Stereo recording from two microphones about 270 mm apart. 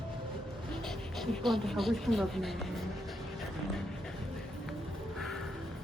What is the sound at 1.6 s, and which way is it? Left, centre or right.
Speech, centre.